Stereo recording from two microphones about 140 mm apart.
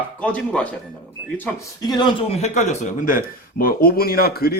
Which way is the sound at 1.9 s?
30° left (ahead or behind).